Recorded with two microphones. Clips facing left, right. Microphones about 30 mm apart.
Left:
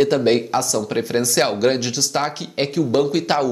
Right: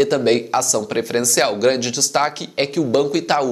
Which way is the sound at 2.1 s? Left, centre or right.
Centre.